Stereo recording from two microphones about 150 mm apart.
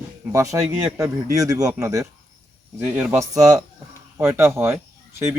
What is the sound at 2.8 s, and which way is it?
Speech, 10° right (ahead or behind).